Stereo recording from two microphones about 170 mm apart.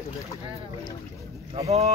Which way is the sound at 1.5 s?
40° right (ahead or behind).